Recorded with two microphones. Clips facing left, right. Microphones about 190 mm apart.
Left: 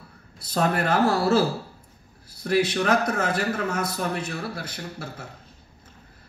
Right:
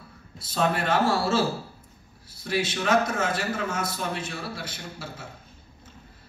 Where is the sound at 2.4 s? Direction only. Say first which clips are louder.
Left 5 dB; 60° left (ahead or behind).